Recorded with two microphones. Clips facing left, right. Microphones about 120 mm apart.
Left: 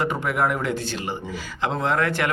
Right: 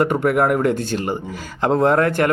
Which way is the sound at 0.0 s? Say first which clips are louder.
Right 6 dB; 55° right (ahead or behind).